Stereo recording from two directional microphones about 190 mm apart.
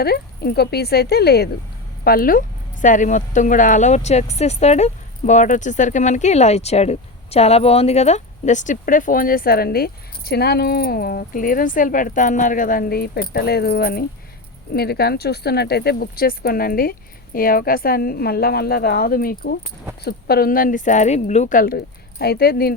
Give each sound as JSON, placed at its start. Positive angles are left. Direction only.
{"t": 0.0, "sound": "speech", "side_deg": 55}